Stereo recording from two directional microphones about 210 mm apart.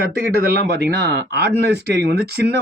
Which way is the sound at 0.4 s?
50° right (ahead or behind).